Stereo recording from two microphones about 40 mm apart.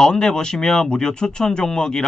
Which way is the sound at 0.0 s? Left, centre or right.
Centre.